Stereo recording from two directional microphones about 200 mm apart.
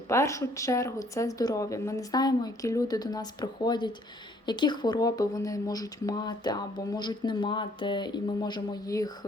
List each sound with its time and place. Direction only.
0.1 s speech: 15° left (ahead or behind)